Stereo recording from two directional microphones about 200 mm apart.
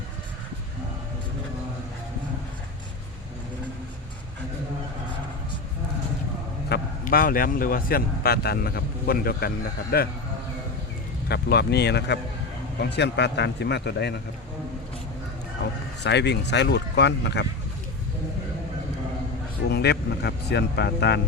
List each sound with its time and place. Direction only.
6.7 s speech: 50° left (ahead or behind)
11.3 s speech: 55° left (ahead or behind)
16.0 s speech: 60° left (ahead or behind)
19.6 s speech: 55° left (ahead or behind)